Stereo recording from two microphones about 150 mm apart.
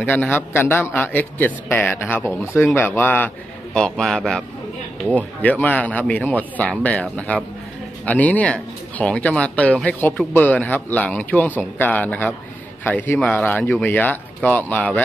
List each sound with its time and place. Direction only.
0.0 s a man's voice: 10° left (ahead or behind)